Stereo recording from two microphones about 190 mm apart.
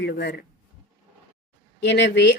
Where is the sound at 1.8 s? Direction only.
65° left (ahead or behind).